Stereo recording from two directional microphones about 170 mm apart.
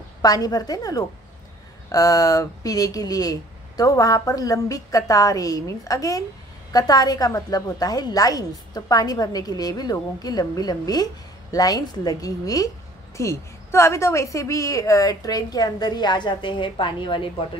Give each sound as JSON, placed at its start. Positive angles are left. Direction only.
{"t": 0.2, "sound": "speech", "side_deg": 20}